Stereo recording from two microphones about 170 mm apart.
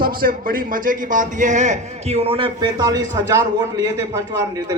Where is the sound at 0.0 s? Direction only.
60° right (ahead or behind).